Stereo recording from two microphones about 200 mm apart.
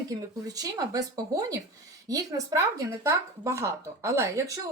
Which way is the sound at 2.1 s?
15° right (ahead or behind).